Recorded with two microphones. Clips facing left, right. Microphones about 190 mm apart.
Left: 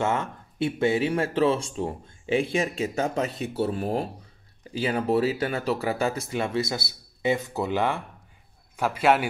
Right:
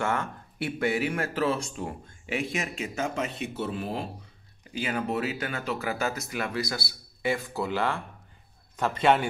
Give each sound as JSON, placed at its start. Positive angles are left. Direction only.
{"t": 0.0, "sound": "speech", "side_deg": 20}
{"t": 4.7, "sound": "a man's voice", "side_deg": 30}